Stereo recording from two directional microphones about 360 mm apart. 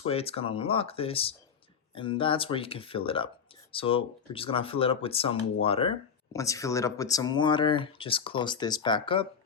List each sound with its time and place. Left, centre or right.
0.0 s speech: centre